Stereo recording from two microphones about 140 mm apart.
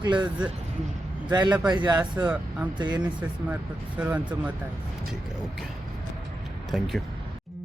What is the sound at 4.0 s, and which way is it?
Speech, 10° right (ahead or behind).